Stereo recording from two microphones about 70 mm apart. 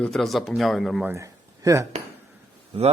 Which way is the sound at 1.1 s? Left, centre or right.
Right.